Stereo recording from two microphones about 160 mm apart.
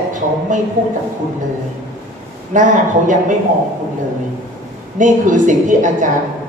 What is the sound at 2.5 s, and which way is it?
Speech, 50° right (ahead or behind).